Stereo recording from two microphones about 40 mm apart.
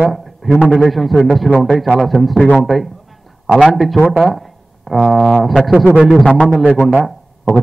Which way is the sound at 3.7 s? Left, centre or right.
Centre.